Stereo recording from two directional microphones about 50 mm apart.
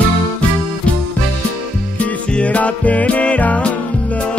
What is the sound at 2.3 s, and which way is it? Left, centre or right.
Music, left.